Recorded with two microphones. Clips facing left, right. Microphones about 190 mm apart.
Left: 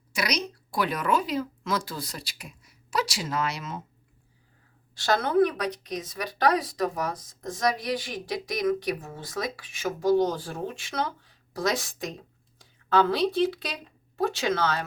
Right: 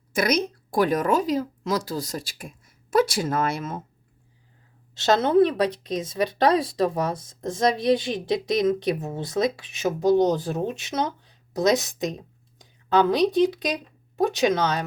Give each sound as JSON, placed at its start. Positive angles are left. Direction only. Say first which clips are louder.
{"t": 0.1, "sound": "a woman's voice", "louder": "right 7 dB", "side_deg": -50}
{"t": 4.9, "sound": "speech", "louder": "right 4 dB", "side_deg": -25}